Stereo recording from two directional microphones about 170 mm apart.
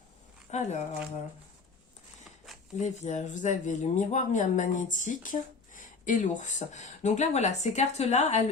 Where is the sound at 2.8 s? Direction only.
45° left (ahead or behind).